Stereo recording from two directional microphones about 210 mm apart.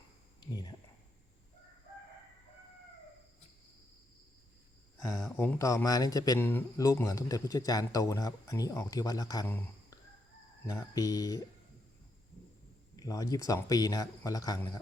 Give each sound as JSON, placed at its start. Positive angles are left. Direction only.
{"t": 0.3, "sound": "a sound", "side_deg": 20}
{"t": 5.0, "sound": "speech", "side_deg": 15}
{"t": 13.0, "sound": "speech", "side_deg": 15}